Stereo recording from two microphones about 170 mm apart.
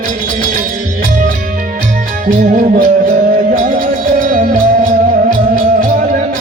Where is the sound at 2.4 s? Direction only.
55° right (ahead or behind).